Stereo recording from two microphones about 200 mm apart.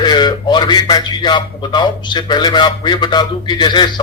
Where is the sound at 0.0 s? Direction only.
20° left (ahead or behind).